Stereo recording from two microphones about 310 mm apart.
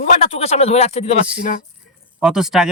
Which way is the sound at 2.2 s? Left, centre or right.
Centre.